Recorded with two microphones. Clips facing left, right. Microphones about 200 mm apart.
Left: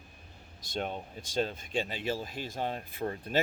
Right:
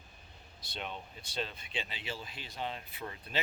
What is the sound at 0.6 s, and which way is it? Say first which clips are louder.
Speech: left 7 dB; 45° left (ahead or behind).